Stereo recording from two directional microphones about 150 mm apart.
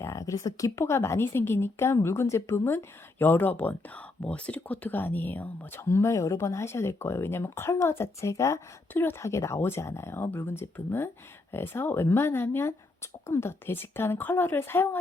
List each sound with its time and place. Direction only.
0.0 s speech: 20° left (ahead or behind)